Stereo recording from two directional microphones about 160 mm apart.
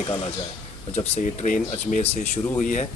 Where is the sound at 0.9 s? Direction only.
40° left (ahead or behind).